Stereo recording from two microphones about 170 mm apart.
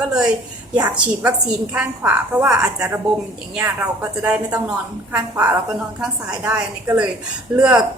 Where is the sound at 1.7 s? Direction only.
5° right (ahead or behind).